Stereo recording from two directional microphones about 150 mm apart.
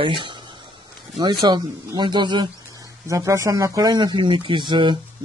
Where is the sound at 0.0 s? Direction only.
35° right (ahead or behind).